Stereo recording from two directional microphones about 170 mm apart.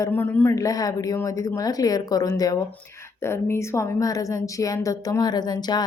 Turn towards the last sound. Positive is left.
turn(degrees=25)  # may be behind; listen again after turning